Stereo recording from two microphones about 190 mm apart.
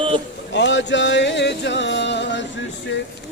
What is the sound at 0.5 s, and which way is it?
Music, 70° left (ahead or behind).